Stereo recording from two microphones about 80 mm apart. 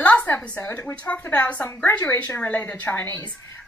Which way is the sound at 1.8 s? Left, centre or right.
Left.